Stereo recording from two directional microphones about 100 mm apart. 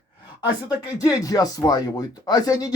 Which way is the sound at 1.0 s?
35° left (ahead or behind).